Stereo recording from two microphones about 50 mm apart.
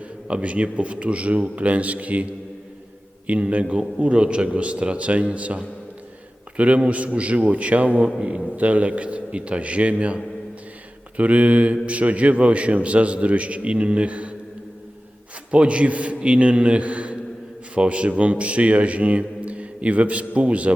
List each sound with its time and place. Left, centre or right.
0.3 s a man's voice: right
3.2 s a man's voice: right
11.2 s a man's voice: right
15.5 s a man's voice: right